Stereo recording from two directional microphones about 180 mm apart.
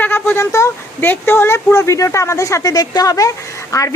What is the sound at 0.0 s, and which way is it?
Speech, 10° left (ahead or behind).